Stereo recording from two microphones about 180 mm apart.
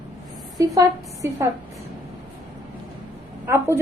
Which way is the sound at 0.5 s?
20° right (ahead or behind).